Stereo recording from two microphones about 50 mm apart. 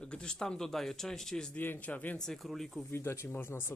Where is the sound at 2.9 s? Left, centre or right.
Left.